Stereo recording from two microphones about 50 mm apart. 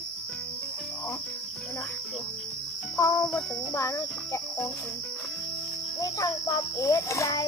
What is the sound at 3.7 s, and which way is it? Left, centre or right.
Speech, left.